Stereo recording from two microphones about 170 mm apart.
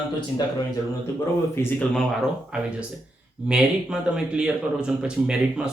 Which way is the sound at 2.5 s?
5° right (ahead or behind).